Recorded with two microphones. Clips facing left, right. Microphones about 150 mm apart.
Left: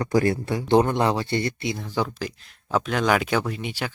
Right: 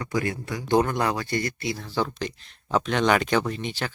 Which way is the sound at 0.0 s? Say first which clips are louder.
Left 6 dB; 35° left (ahead or behind).